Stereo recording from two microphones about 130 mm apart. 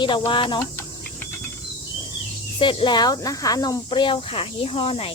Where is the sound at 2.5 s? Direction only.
40° left (ahead or behind).